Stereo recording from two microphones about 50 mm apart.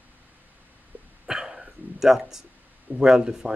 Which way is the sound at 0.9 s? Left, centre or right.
Right.